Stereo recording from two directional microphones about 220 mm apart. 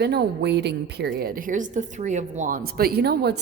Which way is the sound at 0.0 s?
50° right (ahead or behind).